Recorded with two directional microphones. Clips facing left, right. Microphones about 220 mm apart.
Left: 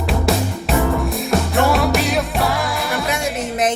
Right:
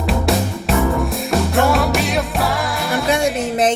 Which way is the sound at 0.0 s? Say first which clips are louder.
Right 1 dB; centre (ahead or behind).